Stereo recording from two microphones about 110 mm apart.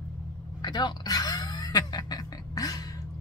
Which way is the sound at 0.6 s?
40° left (ahead or behind).